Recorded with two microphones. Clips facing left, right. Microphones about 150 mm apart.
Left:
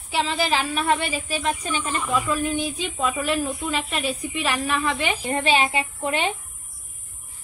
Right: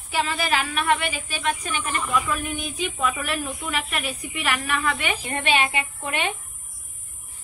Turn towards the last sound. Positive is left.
turn(degrees=30)  # may be behind; listen again after turning